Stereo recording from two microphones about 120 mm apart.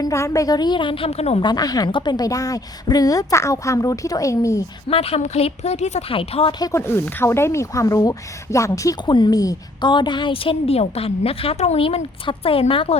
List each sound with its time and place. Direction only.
0.0 s a woman's voice: 25° left (ahead or behind)
4.9 s a woman's voice: 55° left (ahead or behind)
6.1 s a woman's voice: 50° left (ahead or behind)
6.6 s a woman's voice: 25° left (ahead or behind)
9.0 s a woman's voice: 40° left (ahead or behind)